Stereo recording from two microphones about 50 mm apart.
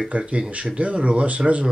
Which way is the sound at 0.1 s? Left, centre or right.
Right.